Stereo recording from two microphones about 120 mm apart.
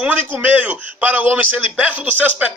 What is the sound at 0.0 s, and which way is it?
A man's voice, 15° right (ahead or behind).